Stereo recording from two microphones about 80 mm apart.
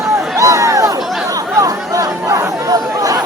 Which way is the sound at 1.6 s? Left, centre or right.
Right.